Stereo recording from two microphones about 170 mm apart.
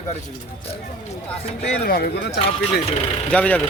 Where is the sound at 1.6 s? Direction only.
60° left (ahead or behind).